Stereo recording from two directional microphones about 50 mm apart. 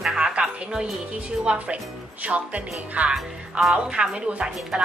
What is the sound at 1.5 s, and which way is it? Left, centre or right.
A woman's voice, right.